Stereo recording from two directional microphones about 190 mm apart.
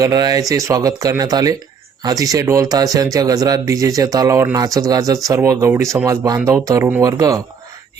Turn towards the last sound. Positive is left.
turn(degrees=-20)  # may be behind; listen again after turning